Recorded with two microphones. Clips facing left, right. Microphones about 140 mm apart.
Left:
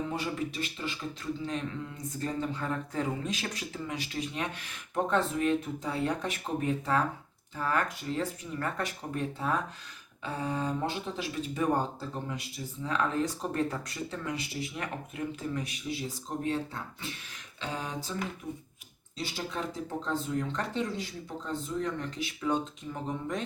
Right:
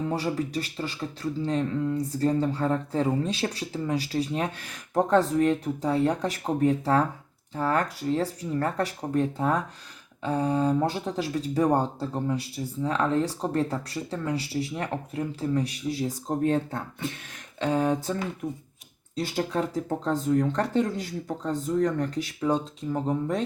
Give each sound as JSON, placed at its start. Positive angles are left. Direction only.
{"t": 0.1, "sound": "speech", "side_deg": -35}